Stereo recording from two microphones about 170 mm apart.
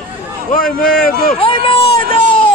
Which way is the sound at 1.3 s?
30° left (ahead or behind).